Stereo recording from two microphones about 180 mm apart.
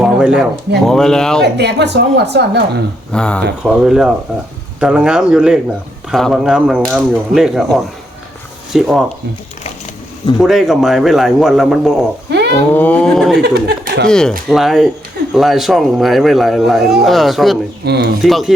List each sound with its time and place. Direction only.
0.0 s a sound: 5° right (ahead or behind)
0.9 s speech: 5° left (ahead or behind)
1.5 s a woman's voice: 70° right (ahead or behind)
3.1 s speech: 5° left (ahead or behind)
10.4 s speech: centre (ahead or behind)
12.3 s a sound: 65° right (ahead or behind)
12.7 s speech: 10° left (ahead or behind)
13.4 s speech: 65° right (ahead or behind)
14.1 s speech: 5° left (ahead or behind)
17.8 s speech: 65° right (ahead or behind)
18.2 s speech: centre (ahead or behind)